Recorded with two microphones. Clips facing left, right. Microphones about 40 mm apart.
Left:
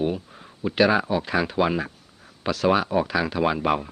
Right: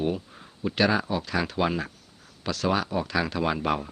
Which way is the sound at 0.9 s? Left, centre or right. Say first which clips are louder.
Left 4 dB; centre.